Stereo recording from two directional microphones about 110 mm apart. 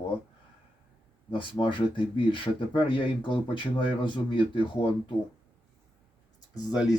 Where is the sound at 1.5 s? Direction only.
50° left (ahead or behind).